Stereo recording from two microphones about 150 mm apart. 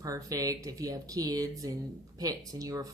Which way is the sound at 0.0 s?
25° right (ahead or behind).